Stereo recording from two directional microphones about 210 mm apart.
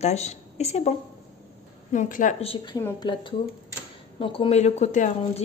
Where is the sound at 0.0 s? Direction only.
30° left (ahead or behind); by 3.1 s 15° left (ahead or behind).